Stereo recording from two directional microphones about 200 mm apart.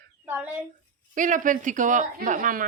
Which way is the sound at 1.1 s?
40° right (ahead or behind).